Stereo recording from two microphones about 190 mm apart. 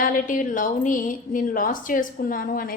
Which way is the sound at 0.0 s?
45° left (ahead or behind).